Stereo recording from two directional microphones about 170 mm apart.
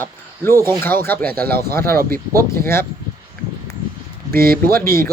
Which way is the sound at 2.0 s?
60° right (ahead or behind).